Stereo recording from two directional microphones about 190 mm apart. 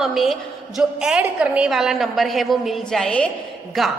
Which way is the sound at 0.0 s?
Centre (ahead or behind).